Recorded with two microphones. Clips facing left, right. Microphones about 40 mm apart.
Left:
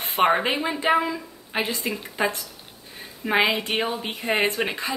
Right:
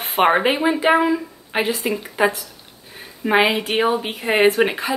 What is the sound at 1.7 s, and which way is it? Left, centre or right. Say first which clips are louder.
Speech: right 6 dB; centre.